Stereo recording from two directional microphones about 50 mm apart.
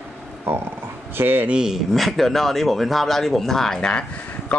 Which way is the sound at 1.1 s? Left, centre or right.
Right.